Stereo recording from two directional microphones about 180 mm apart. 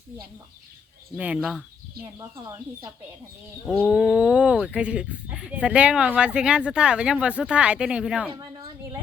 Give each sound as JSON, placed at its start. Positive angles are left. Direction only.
{"t": 1.1, "sound": "speech", "side_deg": -5}
{"t": 2.1, "sound": "speech", "side_deg": -15}
{"t": 3.8, "sound": "speech", "side_deg": -5}
{"t": 8.3, "sound": "speech", "side_deg": -25}